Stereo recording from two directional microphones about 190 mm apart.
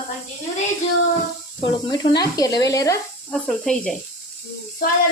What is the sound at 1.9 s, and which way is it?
Speech, 20° left (ahead or behind).